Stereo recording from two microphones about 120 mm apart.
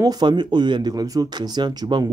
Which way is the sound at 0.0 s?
35° right (ahead or behind).